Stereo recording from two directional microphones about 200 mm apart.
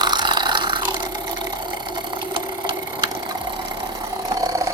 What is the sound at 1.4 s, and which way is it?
Vehicle, 20° right (ahead or behind).